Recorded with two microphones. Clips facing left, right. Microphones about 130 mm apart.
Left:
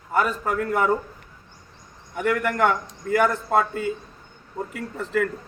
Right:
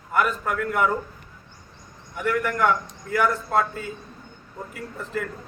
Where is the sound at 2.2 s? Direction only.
55° left (ahead or behind).